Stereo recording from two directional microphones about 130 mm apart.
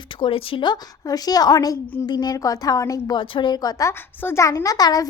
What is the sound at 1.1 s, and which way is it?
A woman's voice, 30° left (ahead or behind).